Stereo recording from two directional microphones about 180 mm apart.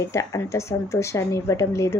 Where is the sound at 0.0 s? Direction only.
15° left (ahead or behind).